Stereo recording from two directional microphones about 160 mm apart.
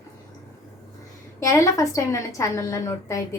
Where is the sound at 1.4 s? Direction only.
20° left (ahead or behind).